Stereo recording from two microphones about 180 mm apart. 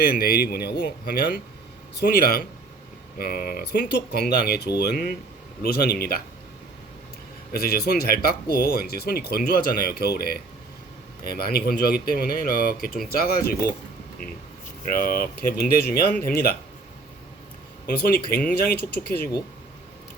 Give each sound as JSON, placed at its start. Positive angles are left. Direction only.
{"t": 0.2, "sound": "speech", "side_deg": 60}
{"t": 7.5, "sound": "speech", "side_deg": 60}
{"t": 14.8, "sound": "speech", "side_deg": 55}
{"t": 17.8, "sound": "speech", "side_deg": 55}